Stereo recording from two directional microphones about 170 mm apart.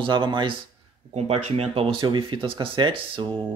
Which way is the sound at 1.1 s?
40° right (ahead or behind).